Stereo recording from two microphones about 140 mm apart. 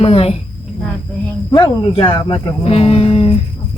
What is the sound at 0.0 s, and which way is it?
Speech, 45° left (ahead or behind).